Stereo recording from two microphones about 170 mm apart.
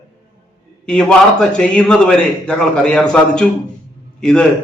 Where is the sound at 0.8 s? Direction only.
5° left (ahead or behind).